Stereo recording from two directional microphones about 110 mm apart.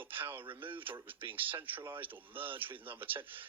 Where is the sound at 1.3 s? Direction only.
20° right (ahead or behind).